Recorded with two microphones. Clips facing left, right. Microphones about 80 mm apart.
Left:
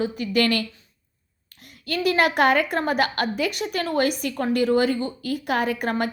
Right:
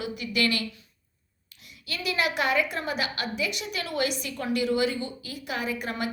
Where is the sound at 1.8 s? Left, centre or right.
Left.